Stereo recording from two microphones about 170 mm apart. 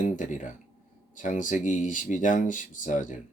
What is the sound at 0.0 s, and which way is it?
Speech, 50° left (ahead or behind).